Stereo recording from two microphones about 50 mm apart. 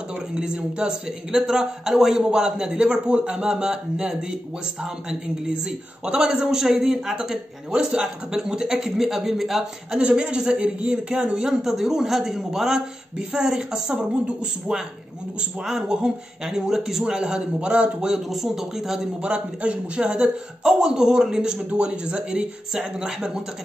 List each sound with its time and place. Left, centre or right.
0.3 s speech: centre
5.4 s speech: centre
15.6 s speech: centre
18.3 s speech: centre
19.2 s speech: right